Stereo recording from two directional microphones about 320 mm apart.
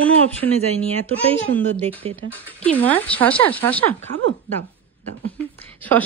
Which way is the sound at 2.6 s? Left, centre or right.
Centre.